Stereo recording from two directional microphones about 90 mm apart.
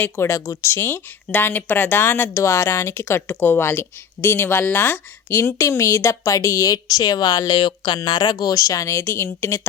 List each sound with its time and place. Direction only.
0.0 s speech: 30° left (ahead or behind)